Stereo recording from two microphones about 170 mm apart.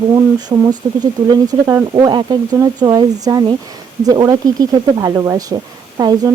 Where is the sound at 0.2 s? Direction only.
25° right (ahead or behind).